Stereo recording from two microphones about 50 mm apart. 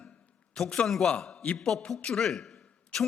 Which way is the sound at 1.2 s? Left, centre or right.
Centre.